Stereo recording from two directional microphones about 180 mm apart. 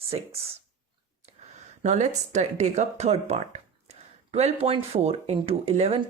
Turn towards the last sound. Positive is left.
turn(degrees=-35)  # may be behind; listen again after turning